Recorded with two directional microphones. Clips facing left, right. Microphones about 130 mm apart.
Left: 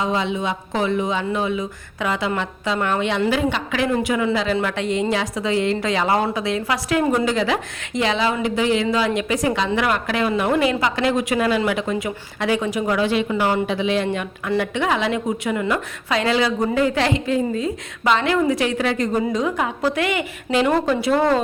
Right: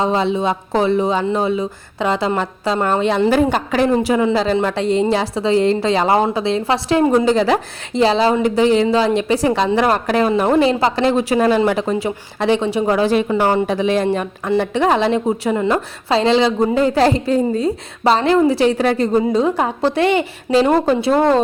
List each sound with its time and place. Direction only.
0.0 s a woman's voice: 35° right (ahead or behind)
7.3 s a woman's voice: 35° right (ahead or behind)